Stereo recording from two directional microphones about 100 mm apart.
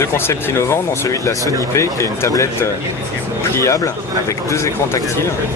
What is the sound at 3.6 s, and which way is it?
Speech, 30° left (ahead or behind).